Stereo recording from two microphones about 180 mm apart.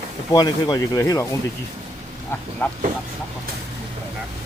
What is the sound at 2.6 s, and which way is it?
Speech, 10° left (ahead or behind).